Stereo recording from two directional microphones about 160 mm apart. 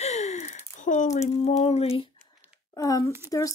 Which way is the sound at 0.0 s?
45° left (ahead or behind).